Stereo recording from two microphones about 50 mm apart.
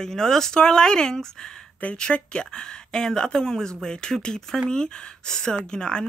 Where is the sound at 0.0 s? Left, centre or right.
Centre.